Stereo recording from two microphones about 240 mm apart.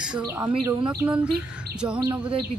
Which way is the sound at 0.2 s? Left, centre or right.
Centre.